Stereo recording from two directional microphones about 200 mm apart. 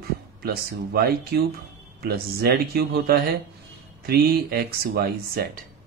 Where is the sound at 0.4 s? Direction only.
50° right (ahead or behind).